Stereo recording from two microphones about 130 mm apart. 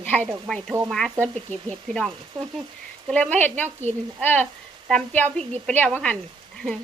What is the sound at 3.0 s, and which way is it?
Speech, 10° left (ahead or behind).